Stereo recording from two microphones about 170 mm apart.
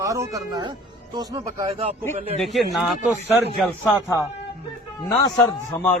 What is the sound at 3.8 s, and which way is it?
Speech, 20° left (ahead or behind).